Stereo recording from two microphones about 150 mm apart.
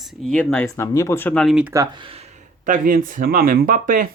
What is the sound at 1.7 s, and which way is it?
Speech, 20° right (ahead or behind).